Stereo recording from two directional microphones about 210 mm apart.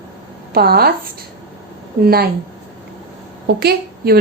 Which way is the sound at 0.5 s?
45° right (ahead or behind).